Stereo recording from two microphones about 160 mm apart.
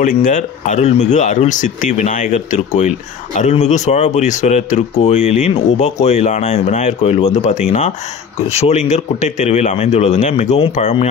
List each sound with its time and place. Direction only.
0.0 s speech: 55° left (ahead or behind)